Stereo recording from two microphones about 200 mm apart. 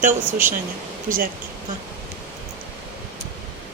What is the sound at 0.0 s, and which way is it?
Speech, 40° right (ahead or behind).